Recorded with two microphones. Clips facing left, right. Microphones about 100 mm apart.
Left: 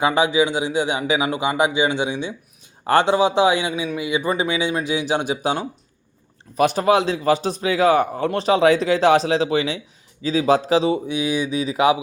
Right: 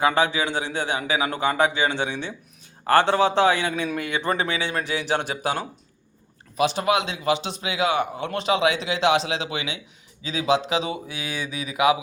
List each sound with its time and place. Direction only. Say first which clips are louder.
0.0 s a man's voice: left 3 dB; 15° left (ahead or behind)
6.6 s a man's voice: left 4 dB; 50° left (ahead or behind)
6.8 s a man's voice: left 5 dB; 35° left (ahead or behind)
11.2 s speech: left 9 dB; 20° left (ahead or behind)